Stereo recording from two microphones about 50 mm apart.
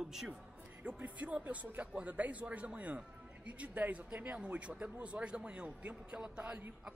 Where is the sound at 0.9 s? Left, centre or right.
Right.